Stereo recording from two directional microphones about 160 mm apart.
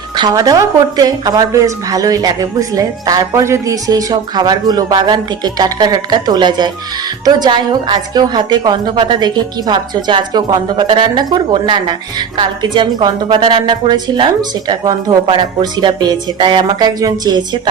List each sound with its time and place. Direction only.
0.2 s a woman's voice: 25° right (ahead or behind)